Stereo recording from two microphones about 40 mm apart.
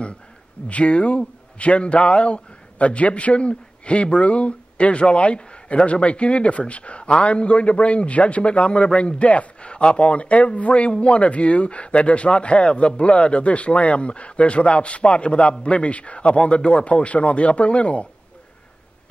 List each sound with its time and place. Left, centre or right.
0.7 s a man's voice: left